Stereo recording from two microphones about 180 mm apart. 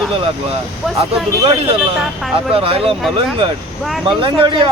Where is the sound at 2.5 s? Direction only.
30° right (ahead or behind).